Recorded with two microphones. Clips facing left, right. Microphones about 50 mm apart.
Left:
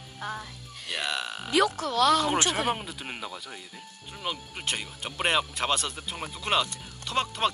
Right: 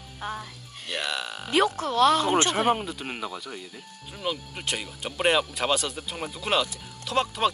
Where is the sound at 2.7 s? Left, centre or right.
Centre.